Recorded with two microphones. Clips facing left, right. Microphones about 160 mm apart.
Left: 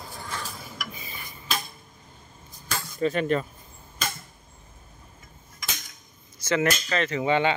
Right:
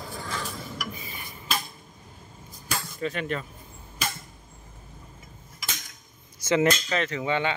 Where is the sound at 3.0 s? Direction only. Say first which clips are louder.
Left 7 dB; 35° left (ahead or behind).